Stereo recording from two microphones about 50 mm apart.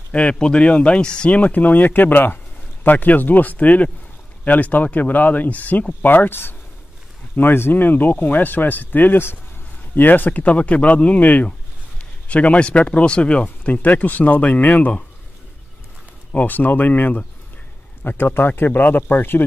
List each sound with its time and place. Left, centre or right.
0.1 s speech: left
1.3 s speech: left
10.4 s speech: left
16.3 s speech: left
18.0 s speech: left